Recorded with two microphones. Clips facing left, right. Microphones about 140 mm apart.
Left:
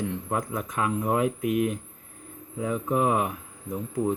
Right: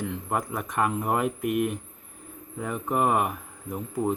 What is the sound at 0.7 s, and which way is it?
Speech, 60° right (ahead or behind).